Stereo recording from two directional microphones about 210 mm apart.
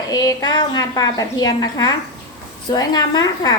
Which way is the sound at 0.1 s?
15° left (ahead or behind).